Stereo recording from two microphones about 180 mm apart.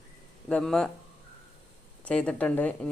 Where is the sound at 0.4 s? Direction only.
5° left (ahead or behind).